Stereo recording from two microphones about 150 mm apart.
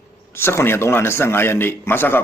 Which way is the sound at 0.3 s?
15° left (ahead or behind).